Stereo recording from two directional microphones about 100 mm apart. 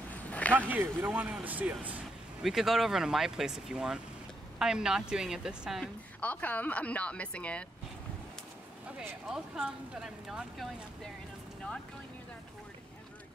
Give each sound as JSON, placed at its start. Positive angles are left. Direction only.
{"t": 0.1, "sound": "a sound", "side_deg": 15}
{"t": 0.6, "sound": "speech", "side_deg": -20}
{"t": 2.4, "sound": "speech", "side_deg": -5}
{"t": 6.2, "sound": "speech", "side_deg": 15}
{"t": 9.3, "sound": "speech", "side_deg": -5}